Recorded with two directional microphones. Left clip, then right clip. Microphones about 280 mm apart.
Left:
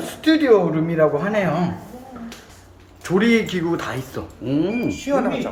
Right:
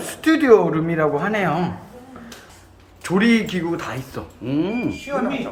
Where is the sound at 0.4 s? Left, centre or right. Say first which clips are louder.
Right 4 dB; centre.